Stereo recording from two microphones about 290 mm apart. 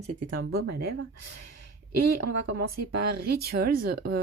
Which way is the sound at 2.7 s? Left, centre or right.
Right.